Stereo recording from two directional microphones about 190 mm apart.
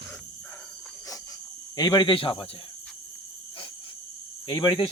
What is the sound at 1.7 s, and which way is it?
Speech, 20° left (ahead or behind).